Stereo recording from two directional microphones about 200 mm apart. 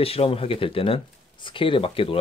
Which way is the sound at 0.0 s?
30° left (ahead or behind).